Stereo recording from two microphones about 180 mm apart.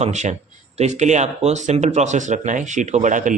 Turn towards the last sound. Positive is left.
turn(degrees=-45)  # may be behind; listen again after turning